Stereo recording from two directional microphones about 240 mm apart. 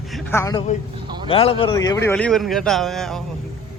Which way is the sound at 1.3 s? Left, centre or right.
Left.